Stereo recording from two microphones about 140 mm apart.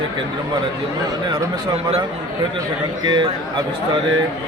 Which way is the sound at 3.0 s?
35° right (ahead or behind).